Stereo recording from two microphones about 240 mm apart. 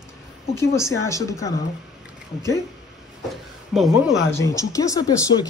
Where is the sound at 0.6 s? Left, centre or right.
Centre.